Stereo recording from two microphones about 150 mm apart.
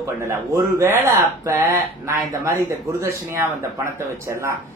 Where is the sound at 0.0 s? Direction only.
20° right (ahead or behind).